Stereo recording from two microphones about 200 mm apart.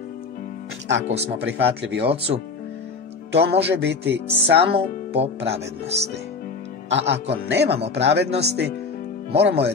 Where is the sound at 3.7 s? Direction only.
55° right (ahead or behind).